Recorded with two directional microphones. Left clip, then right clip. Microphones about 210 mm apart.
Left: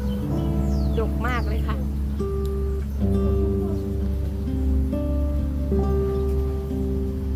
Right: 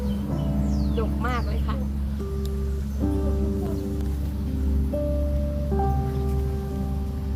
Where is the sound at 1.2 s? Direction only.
30° left (ahead or behind).